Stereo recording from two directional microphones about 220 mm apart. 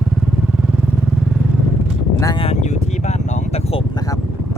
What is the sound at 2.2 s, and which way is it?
Vehicle, 20° left (ahead or behind).